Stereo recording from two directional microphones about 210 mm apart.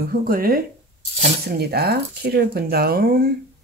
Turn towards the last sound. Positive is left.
turn(degrees=-45)  # may be behind; listen again after turning